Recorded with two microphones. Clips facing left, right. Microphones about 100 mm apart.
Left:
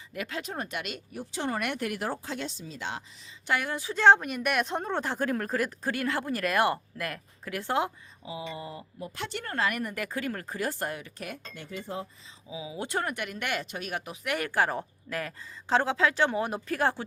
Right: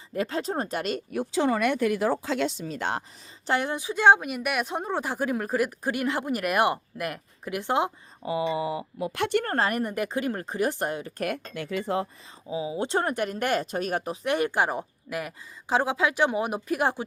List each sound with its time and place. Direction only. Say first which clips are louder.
0.1 s speech: right 7 dB; 35° right (ahead or behind)
2.2 s speech: right 9 dB; 90° right; by 3.0 s 50° right (ahead or behind)
3.4 s speech: right 3 dB; 30° right (ahead or behind)
8.2 s speech: right 11 dB; 70° right (ahead or behind); by 9.6 s 50° right (ahead or behind)
9.6 s speech: right 4 dB; 30° right (ahead or behind)
11.2 s speech: right 10 dB; 60° right (ahead or behind); by 12.0 s 85° right
12.5 s speech: right 7 dB; 35° right (ahead or behind); by 17.1 s 15° right (ahead or behind)